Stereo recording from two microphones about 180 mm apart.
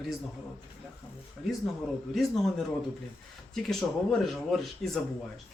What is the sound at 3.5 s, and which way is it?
A man's voice, centre (ahead or behind).